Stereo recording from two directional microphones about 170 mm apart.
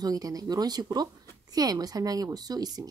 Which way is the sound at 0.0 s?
20° right (ahead or behind).